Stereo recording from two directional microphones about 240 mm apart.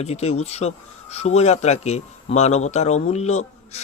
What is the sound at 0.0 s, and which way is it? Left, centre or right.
A man's voice, left.